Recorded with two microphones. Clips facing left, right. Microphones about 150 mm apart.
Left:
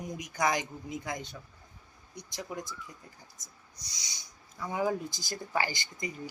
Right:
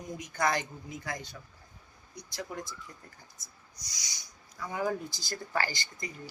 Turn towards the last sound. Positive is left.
turn(degrees=15)  # may be behind; listen again after turning